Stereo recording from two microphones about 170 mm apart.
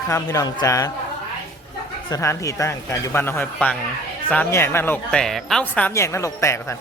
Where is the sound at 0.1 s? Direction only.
20° left (ahead or behind).